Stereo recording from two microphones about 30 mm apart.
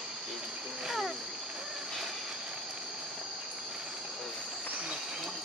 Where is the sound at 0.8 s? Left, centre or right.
Centre.